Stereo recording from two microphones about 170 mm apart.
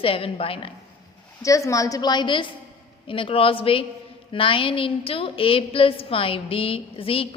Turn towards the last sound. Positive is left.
turn(degrees=35)  # may be behind; listen again after turning